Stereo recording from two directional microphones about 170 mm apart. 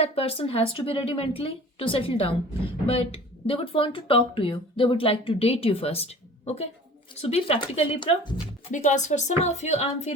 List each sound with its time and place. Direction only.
0.0 s speech: 35° left (ahead or behind)
8.7 s speech: 45° left (ahead or behind)